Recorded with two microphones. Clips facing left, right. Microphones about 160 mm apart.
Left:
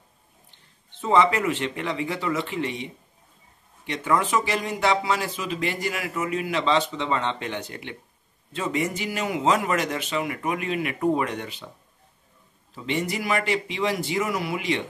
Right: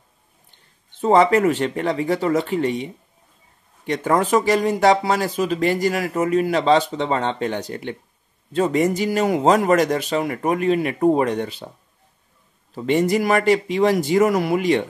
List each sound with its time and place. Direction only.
1.0 s speech: 40° right (ahead or behind)
12.7 s speech: 45° right (ahead or behind)